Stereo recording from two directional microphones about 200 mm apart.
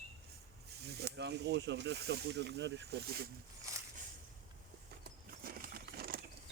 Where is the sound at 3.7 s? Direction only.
15° right (ahead or behind).